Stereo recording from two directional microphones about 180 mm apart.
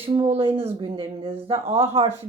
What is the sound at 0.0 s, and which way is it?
Speech, 30° right (ahead or behind).